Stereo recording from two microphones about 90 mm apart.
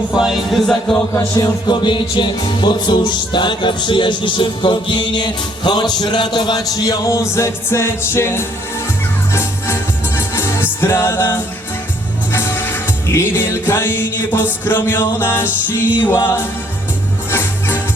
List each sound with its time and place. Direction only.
0.2 s speech: 5° right (ahead or behind)
1.4 s music: 55° left (ahead or behind); by 17.7 s 25° left (ahead or behind)